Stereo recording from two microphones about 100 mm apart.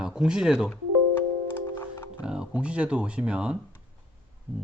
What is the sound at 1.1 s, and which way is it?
Music, 25° left (ahead or behind).